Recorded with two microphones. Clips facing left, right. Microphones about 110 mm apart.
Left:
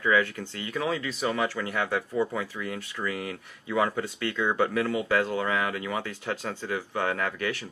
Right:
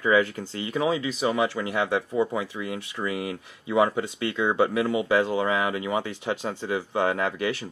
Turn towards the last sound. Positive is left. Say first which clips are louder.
# right 4 dB
turn(degrees=-15)  # may be behind; listen again after turning